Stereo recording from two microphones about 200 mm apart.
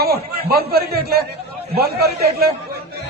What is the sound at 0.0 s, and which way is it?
A man's voice, 50° right (ahead or behind).